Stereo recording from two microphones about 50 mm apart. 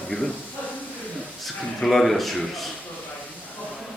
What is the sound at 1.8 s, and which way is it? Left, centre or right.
Speech, centre.